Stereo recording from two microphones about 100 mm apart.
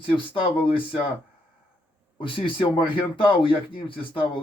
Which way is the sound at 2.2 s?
60° left (ahead or behind).